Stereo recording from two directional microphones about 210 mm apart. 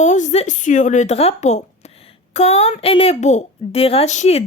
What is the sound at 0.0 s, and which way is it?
A woman's voice, 35° left (ahead or behind).